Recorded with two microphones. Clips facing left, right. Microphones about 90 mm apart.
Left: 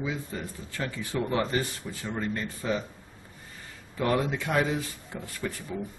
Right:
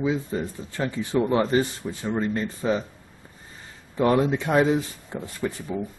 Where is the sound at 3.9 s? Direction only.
25° right (ahead or behind).